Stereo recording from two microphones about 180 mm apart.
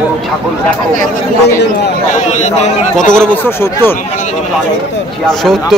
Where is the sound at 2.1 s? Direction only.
40° left (ahead or behind).